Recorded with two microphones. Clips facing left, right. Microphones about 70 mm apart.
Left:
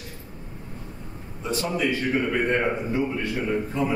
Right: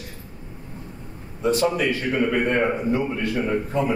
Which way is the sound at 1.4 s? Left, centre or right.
Right.